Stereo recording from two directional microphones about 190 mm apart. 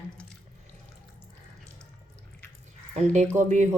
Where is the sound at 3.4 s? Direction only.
40° right (ahead or behind).